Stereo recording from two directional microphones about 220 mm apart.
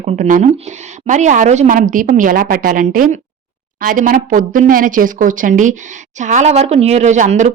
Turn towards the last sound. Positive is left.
turn(degrees=-35)  # may be behind; listen again after turning